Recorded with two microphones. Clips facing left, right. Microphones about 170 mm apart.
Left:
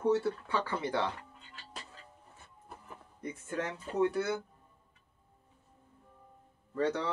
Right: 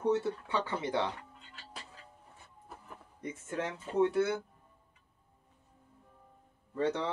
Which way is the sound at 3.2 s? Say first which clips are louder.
Even; 25° right (ahead or behind).